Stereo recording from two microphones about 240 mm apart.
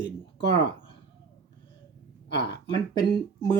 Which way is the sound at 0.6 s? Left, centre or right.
Centre.